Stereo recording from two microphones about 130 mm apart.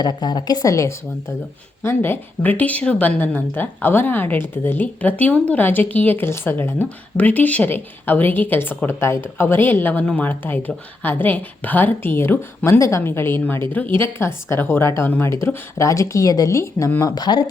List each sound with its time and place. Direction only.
0.0 s a woman's voice: 35° left (ahead or behind)